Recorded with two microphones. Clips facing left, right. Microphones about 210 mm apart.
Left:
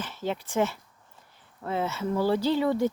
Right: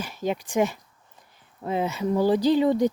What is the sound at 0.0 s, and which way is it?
Speech, 15° right (ahead or behind).